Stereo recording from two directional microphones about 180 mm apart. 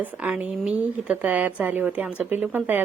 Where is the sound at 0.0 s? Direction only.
10° right (ahead or behind).